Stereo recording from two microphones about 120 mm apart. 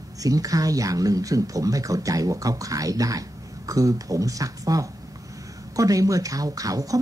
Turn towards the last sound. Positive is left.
turn(degrees=-30)  # may be behind; listen again after turning